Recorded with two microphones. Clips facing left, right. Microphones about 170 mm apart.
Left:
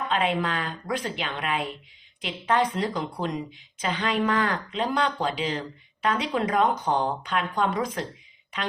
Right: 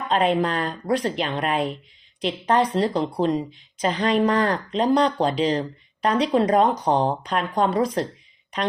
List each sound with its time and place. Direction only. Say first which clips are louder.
0.1 s speech: right 6 dB; 35° right (ahead or behind)